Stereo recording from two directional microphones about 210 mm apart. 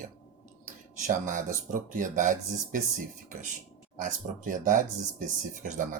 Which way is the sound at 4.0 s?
40° right (ahead or behind).